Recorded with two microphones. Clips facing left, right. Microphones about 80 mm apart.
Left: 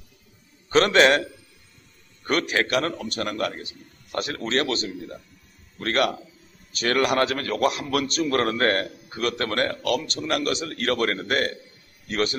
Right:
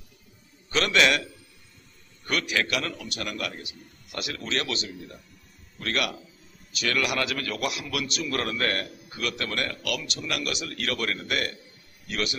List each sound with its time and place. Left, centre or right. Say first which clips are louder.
0.7 s a man's voice: left 6 dB; left